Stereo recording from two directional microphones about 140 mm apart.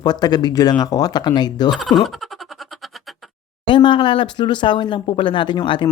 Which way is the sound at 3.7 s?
35° left (ahead or behind).